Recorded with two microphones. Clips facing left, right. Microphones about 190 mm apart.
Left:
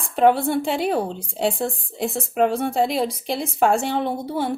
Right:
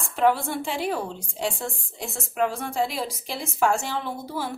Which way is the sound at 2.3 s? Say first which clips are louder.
Left 5 dB; 55° left (ahead or behind).